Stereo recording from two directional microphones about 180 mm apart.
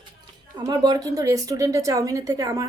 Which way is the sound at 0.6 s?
25° right (ahead or behind).